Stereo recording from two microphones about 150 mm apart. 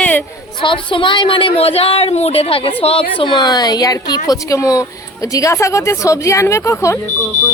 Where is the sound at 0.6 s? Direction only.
35° left (ahead or behind).